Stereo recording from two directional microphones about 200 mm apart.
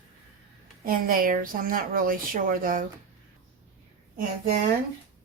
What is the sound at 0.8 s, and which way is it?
A woman's voice, 45° right (ahead or behind).